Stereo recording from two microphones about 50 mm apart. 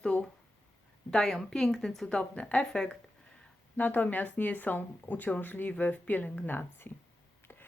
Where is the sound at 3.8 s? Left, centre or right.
Left.